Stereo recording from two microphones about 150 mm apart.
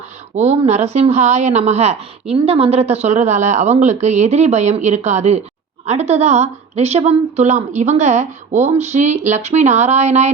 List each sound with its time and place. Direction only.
0.3 s a woman's voice: 50° right (ahead or behind)